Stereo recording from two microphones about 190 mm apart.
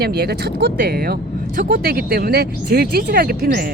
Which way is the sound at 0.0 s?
55° right (ahead or behind).